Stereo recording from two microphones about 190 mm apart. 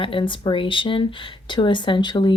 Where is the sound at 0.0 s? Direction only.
25° left (ahead or behind).